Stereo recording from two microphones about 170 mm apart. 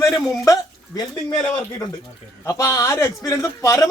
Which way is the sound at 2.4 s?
15° left (ahead or behind).